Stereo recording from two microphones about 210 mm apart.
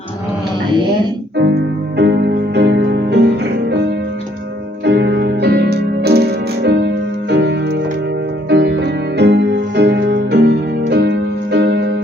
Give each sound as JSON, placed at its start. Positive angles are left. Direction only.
{"t": 2.0, "sound": "music", "side_deg": -55}
{"t": 4.9, "sound": "music", "side_deg": -55}